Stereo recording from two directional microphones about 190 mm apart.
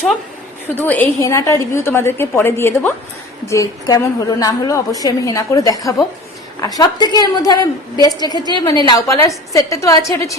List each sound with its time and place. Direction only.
0.8 s a woman's voice: 10° left (ahead or behind)